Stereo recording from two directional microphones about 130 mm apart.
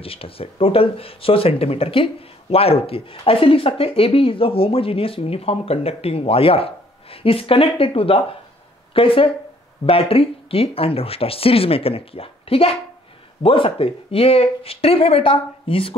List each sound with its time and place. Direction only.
0.0 s speech: 45° left (ahead or behind)